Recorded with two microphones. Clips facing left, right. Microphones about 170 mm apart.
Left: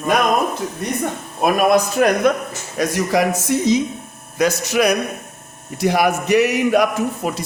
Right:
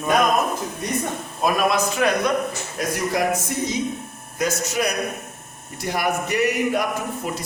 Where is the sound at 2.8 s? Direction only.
90° left.